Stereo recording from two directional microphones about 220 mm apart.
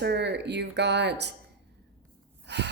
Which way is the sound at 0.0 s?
50° right (ahead or behind).